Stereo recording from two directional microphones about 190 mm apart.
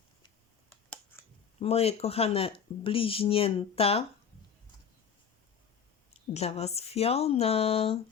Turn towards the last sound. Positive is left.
turn(degrees=30)  # may be behind; listen again after turning